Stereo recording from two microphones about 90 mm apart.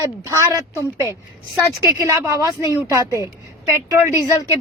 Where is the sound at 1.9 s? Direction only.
30° right (ahead or behind).